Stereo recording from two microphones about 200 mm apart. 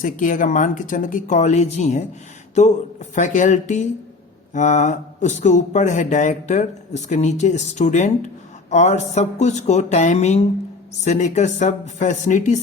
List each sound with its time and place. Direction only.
0.0 s speech: 40° left (ahead or behind)